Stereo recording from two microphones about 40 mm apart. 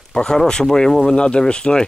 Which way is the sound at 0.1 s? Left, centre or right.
Centre.